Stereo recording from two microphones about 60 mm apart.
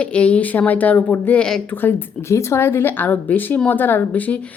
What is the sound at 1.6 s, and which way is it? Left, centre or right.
Speech, left.